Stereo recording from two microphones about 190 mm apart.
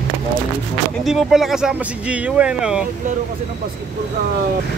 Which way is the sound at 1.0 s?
Centre (ahead or behind).